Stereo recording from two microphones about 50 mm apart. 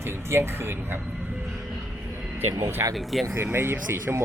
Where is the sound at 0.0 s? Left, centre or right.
Right.